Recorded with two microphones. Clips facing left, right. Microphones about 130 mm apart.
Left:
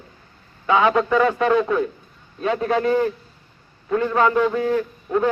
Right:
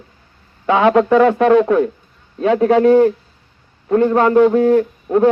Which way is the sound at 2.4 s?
85° right.